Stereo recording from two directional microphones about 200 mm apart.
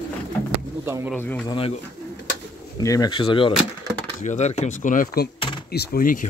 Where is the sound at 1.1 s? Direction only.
10° left (ahead or behind).